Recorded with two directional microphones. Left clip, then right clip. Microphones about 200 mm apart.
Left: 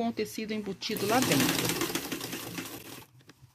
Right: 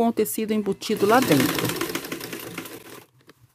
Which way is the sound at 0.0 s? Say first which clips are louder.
Right 10 dB; 45° right (ahead or behind).